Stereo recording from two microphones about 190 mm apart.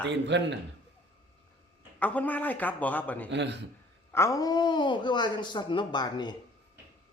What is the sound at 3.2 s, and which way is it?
Speech, 65° right (ahead or behind).